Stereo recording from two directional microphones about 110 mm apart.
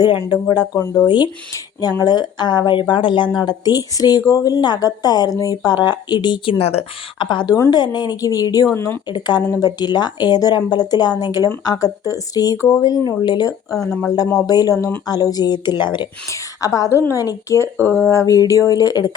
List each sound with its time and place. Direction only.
0.5 s a woman's voice: 35° left (ahead or behind); by 3.2 s 50° left (ahead or behind)
3.3 s a woman's voice: 40° left (ahead or behind); by 6.8 s 65° left (ahead or behind)
7.2 s speech: 45° left (ahead or behind)
7.5 s a woman's voice: 35° left (ahead or behind)
8.7 s a woman's voice: 20° left (ahead or behind)
9.0 s a woman's voice: 40° left (ahead or behind)
13.7 s speech: 5° left (ahead or behind)
14.4 s a woman's voice: 35° left (ahead or behind)
16.3 s a woman's voice: 30° left (ahead or behind)